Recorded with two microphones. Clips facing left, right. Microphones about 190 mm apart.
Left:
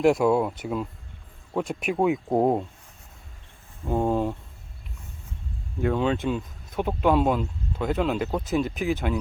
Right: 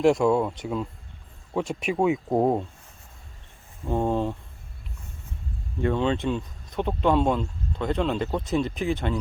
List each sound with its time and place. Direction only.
0.0 s speech: centre (ahead or behind)
3.8 s speech: 5° left (ahead or behind)
5.8 s speech: 5° left (ahead or behind)